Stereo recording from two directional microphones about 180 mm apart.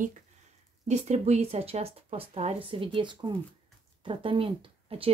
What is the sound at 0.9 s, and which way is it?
Speech, 40° right (ahead or behind).